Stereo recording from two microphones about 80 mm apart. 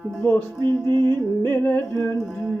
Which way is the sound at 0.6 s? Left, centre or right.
Right.